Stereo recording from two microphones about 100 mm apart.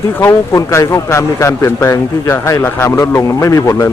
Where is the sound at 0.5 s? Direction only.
30° left (ahead or behind).